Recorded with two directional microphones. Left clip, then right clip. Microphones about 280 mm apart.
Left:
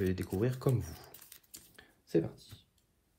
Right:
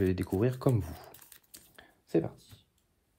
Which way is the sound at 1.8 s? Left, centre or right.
Right.